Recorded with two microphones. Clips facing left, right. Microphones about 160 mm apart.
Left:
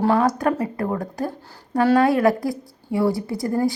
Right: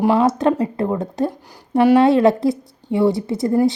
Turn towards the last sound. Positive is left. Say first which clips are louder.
# right 5 dB
turn(degrees=-20)  # may be behind; listen again after turning